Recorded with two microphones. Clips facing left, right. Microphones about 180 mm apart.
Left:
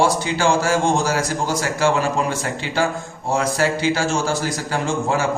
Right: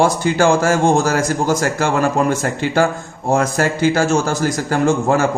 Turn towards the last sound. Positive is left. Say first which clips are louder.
# right 6 dB
turn(degrees=-50)  # may be behind; listen again after turning